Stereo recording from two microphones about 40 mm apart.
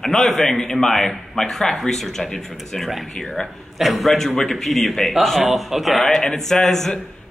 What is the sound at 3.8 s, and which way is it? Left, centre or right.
Speech, centre.